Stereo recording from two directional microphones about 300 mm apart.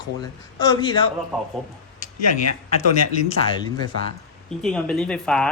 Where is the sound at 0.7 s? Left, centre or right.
Centre.